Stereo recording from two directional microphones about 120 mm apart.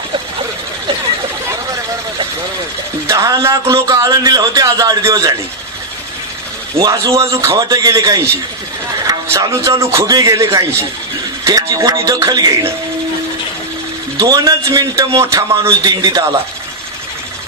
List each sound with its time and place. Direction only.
3.1 s a man's voice: 25° right (ahead or behind)
6.7 s a man's voice: 30° right (ahead or behind)
14.1 s a man's voice: 30° right (ahead or behind)